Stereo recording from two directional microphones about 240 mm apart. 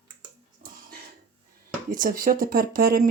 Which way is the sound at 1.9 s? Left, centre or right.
Right.